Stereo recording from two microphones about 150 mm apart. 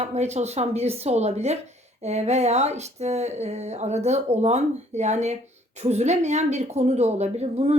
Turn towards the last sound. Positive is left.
turn(degrees=-45)  # may be behind; listen again after turning